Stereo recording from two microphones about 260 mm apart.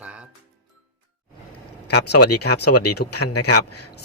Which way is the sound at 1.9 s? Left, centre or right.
Left.